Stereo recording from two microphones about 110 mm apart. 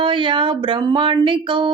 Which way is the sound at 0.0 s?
50° right (ahead or behind).